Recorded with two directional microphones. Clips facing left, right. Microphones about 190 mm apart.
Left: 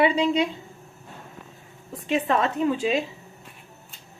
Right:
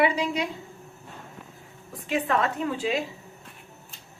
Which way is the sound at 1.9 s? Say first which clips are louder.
Left 2 dB; 25° left (ahead or behind).